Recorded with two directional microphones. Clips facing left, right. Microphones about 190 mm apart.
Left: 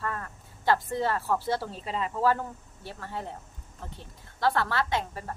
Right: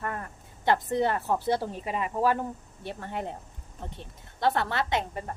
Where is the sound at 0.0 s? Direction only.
20° right (ahead or behind).